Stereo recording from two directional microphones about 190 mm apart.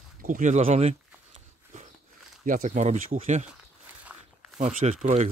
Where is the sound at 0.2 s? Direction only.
45° right (ahead or behind).